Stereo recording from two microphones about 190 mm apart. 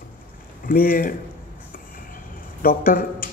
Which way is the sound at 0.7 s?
50° left (ahead or behind).